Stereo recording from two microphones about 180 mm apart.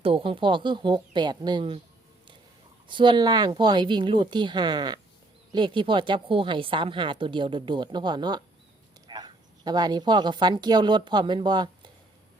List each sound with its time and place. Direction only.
0.0 s a woman's voice: 30° right (ahead or behind)
2.8 s a woman's voice: 25° right (ahead or behind)